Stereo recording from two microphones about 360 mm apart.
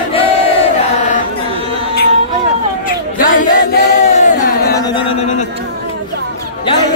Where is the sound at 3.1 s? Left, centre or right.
Left.